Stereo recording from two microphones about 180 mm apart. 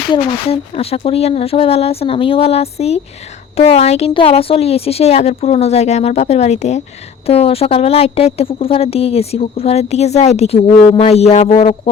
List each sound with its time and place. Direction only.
0.1 s a woman's voice: 35° left (ahead or behind)